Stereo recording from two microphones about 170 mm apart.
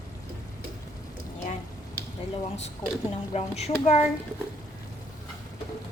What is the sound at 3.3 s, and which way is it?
Speech, 40° left (ahead or behind).